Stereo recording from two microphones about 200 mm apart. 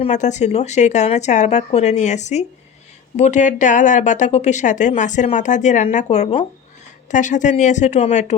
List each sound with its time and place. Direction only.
0.0 s a woman's voice: 35° left (ahead or behind)